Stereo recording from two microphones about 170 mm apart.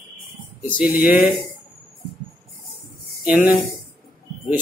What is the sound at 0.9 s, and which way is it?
Speech, 60° left (ahead or behind).